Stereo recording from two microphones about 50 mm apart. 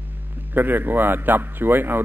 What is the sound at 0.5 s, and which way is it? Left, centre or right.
A man's voice, right.